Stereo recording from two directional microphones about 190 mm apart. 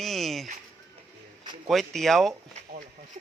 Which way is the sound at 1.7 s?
Centre (ahead or behind).